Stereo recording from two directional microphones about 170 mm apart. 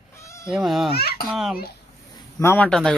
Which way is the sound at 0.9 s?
65° left (ahead or behind).